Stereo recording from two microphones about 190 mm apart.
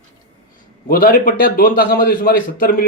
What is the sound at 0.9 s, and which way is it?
A man's voice, 50° left (ahead or behind).